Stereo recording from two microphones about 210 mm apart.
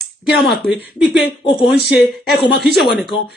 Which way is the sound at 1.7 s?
50° left (ahead or behind).